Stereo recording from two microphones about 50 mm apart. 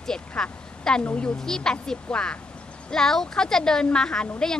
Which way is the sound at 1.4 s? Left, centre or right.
Centre.